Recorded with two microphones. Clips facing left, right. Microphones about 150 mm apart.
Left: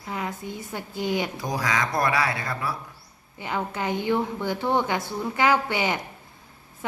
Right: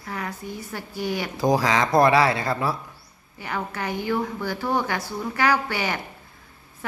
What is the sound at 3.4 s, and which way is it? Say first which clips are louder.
A woman's voice: left 1 dB; 20° left (ahead or behind).